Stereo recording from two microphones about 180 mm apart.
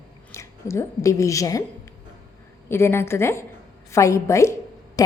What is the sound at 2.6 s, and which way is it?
A woman's voice, 15° left (ahead or behind).